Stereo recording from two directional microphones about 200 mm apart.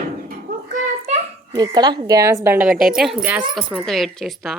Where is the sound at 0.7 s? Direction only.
35° right (ahead or behind).